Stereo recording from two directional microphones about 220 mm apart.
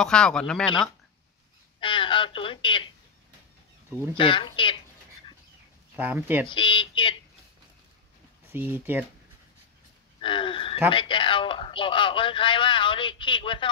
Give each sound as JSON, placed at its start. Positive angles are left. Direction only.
{"t": 0.0, "sound": "speech", "side_deg": 5}
{"t": 1.8, "sound": "speech", "side_deg": 20}
{"t": 4.2, "sound": "speech", "side_deg": 20}
{"t": 5.9, "sound": "speech", "side_deg": -10}
{"t": 6.5, "sound": "speech", "side_deg": 20}
{"t": 8.5, "sound": "speech", "side_deg": -10}
{"t": 10.2, "sound": "speech", "side_deg": 25}